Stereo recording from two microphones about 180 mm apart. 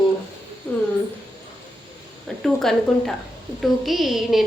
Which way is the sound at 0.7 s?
10° left (ahead or behind).